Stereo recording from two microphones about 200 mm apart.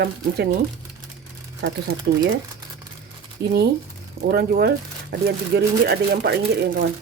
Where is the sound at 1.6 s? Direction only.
60° right (ahead or behind).